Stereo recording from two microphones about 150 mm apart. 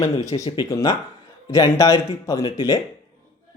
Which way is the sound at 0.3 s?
25° left (ahead or behind).